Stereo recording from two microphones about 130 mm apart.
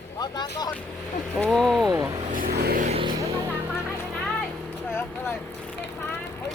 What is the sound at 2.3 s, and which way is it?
Vehicle, 90° right.